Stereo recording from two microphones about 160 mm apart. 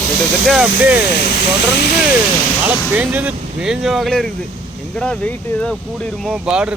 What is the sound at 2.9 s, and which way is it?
Speech, 10° right (ahead or behind).